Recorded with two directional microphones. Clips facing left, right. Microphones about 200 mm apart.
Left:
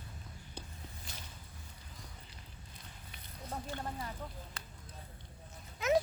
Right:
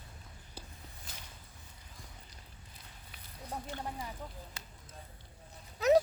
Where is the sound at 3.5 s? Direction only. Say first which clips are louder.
Even; 10° right (ahead or behind).